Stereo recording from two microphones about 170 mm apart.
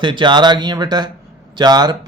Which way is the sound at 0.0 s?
25° right (ahead or behind).